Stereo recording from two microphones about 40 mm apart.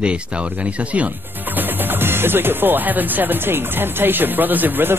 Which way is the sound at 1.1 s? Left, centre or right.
Right.